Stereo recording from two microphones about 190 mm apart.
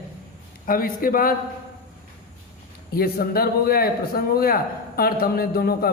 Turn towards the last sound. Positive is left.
turn(degrees=55)  # may be behind; listen again after turning